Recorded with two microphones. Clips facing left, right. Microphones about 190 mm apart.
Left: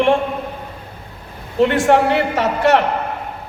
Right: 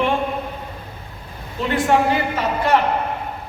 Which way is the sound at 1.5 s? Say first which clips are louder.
Left 5 dB; 75° left (ahead or behind).